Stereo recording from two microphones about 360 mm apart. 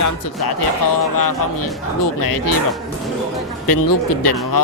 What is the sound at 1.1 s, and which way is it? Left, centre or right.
Speech, left.